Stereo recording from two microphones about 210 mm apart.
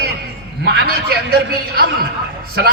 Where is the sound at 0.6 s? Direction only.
50° right (ahead or behind).